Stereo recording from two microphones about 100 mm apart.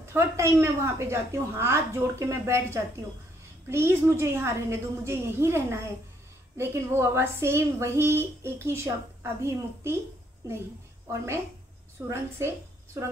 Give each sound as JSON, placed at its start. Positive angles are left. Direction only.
{"t": 0.0, "sound": "a woman's voice", "side_deg": -25}
{"t": 12.1, "sound": "a woman's voice", "side_deg": -25}